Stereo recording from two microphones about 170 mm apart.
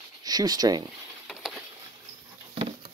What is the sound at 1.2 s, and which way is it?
Patter, centre (ahead or behind).